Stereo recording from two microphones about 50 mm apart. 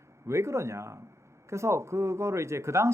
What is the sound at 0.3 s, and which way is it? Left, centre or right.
Speech, right.